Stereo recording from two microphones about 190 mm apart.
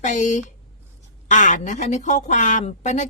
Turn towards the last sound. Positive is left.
turn(degrees=40)  # may be behind; listen again after turning